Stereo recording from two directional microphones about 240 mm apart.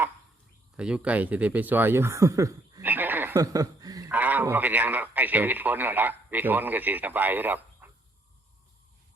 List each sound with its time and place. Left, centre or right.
0.8 s speech: centre